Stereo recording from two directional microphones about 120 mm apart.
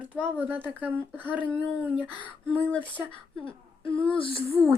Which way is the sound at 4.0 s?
45° left (ahead or behind).